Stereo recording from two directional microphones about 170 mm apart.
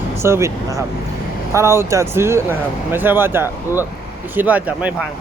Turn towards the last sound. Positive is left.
turn(degrees=-10)  # may be behind; listen again after turning